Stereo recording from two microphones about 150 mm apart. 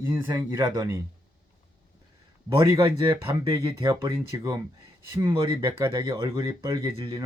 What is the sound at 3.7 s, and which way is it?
Speech, 25° right (ahead or behind).